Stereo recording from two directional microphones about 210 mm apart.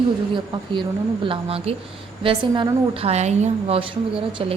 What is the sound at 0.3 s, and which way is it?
Speech, 20° right (ahead or behind).